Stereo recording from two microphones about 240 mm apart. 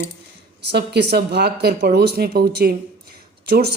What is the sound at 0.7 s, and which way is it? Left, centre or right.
Speech, right.